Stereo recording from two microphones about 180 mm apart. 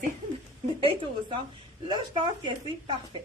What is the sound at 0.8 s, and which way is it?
Speech, 30° right (ahead or behind).